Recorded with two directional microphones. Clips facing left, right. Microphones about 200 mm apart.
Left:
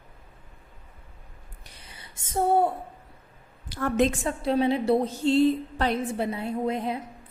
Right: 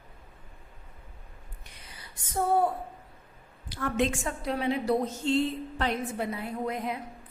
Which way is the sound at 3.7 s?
45° left (ahead or behind).